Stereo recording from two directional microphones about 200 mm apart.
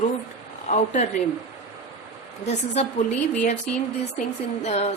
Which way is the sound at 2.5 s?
30° left (ahead or behind).